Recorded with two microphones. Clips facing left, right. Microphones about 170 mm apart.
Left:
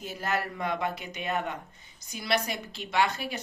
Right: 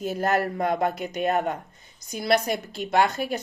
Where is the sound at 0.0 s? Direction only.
45° right (ahead or behind).